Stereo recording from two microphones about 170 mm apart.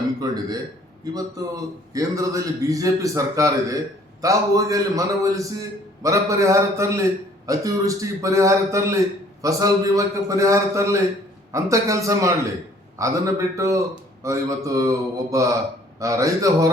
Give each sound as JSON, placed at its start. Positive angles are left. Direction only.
{"t": 0.2, "sound": "a man's voice", "side_deg": -20}